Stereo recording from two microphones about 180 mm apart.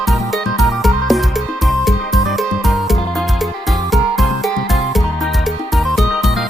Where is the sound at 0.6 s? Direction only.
Centre (ahead or behind).